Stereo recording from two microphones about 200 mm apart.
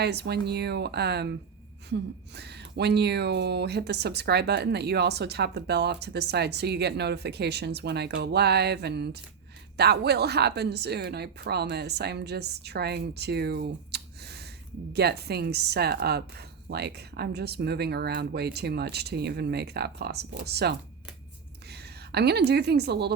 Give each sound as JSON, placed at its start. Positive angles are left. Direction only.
{"t": 0.0, "sound": "a woman's voice", "side_deg": -55}